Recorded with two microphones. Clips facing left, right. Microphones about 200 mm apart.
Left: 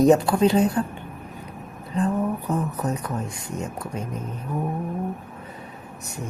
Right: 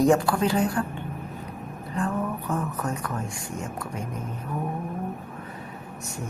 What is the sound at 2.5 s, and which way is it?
A woman's voice, 20° left (ahead or behind).